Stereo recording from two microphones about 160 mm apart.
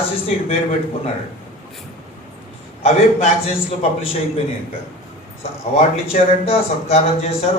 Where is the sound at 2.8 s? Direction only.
40° left (ahead or behind).